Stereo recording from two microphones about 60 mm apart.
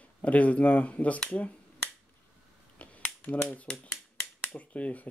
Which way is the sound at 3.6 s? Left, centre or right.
Centre.